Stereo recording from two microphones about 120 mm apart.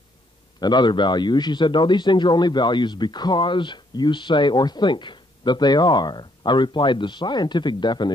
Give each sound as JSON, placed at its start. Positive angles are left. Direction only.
{"t": 0.6, "sound": "speech", "side_deg": 35}